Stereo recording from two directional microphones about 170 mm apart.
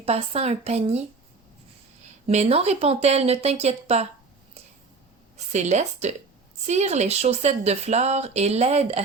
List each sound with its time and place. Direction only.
0.0 s speech: 35° right (ahead or behind)
2.2 s speech: 40° right (ahead or behind)
5.5 s a woman's voice: 45° right (ahead or behind)